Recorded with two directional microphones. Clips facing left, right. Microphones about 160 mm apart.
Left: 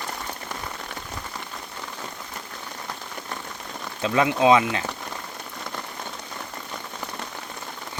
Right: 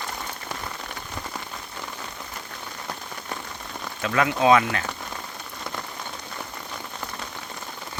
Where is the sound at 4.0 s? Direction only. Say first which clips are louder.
Left 2 dB; 20° left (ahead or behind).